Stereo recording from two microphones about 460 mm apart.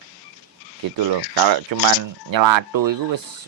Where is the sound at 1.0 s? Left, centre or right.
Right.